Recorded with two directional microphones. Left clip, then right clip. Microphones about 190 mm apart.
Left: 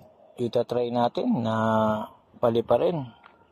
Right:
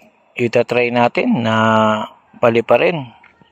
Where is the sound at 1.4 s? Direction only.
35° right (ahead or behind).